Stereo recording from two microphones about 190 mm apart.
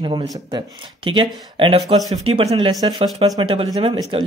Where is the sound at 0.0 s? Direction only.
25° right (ahead or behind).